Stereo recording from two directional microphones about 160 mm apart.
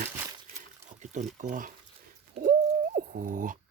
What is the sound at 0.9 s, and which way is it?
Speech, 50° right (ahead or behind).